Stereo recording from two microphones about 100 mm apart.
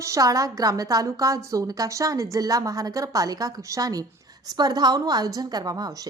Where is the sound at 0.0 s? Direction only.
35° right (ahead or behind).